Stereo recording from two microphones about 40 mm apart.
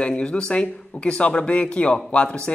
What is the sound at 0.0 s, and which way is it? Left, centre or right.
Speech, left.